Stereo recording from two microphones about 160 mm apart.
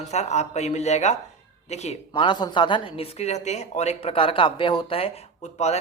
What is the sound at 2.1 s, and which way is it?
Speech, 30° left (ahead or behind).